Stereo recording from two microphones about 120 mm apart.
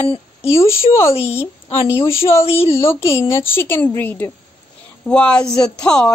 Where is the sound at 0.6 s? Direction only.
25° left (ahead or behind).